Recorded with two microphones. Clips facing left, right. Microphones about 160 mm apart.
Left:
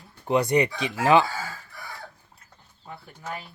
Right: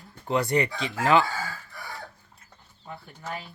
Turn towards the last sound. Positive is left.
turn(degrees=0)  # may be behind; listen again after turning